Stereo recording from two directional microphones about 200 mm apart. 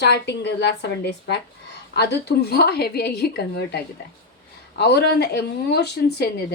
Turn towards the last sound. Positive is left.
turn(degrees=55)  # may be behind; listen again after turning